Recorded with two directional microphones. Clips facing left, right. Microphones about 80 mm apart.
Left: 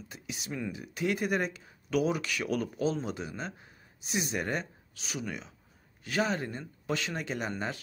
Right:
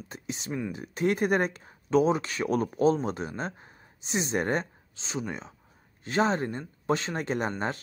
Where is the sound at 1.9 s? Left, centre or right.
Right.